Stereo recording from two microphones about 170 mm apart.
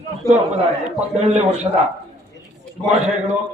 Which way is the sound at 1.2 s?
40° right (ahead or behind).